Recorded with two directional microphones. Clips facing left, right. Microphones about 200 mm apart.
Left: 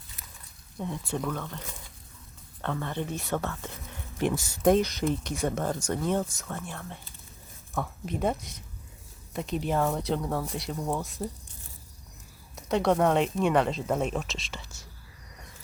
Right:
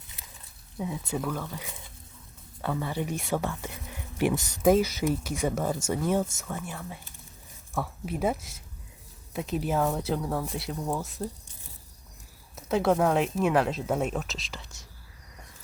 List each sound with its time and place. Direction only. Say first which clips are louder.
0.8 s speech: right 1 dB; 5° right (ahead or behind)
4.6 s speech: right 1 dB; 5° right (ahead or behind)
12.5 s speech: even; 5° right (ahead or behind)